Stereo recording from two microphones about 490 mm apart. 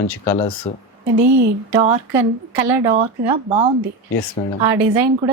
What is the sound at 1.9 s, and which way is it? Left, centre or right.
Speech, right.